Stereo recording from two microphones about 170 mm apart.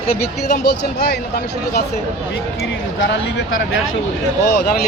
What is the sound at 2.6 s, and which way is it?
Speech, 90° left.